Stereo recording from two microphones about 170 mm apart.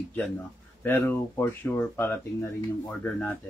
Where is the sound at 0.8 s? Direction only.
15° left (ahead or behind).